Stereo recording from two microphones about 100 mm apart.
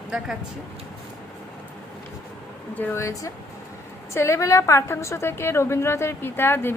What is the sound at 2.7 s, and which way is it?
A woman's voice, 20° left (ahead or behind).